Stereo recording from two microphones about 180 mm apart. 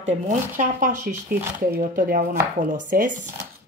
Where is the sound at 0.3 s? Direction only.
45° right (ahead or behind).